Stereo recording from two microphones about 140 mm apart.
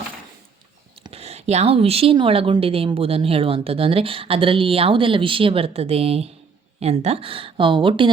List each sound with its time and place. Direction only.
1.1 s speech: 50° right (ahead or behind)